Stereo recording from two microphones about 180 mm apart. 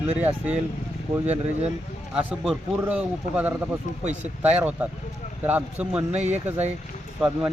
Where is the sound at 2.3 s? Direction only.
5° right (ahead or behind).